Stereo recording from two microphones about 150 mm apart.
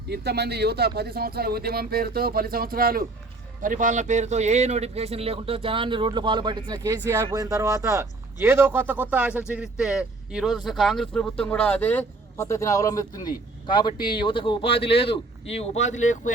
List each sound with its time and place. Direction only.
0.1 s speech: 90° right
3.6 s speech: 60° right (ahead or behind); by 16.3 s 55° left (ahead or behind)